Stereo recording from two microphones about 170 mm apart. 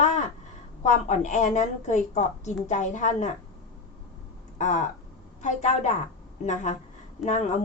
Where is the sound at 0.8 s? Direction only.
45° left (ahead or behind).